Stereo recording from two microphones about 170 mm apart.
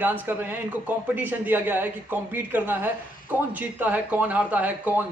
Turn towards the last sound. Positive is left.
turn(degrees=-10)  # may be behind; listen again after turning